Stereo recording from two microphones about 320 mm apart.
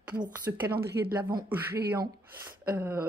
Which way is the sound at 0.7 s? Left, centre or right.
Right.